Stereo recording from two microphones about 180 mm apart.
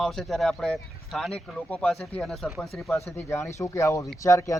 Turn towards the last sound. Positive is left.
turn(degrees=15)  # may be behind; listen again after turning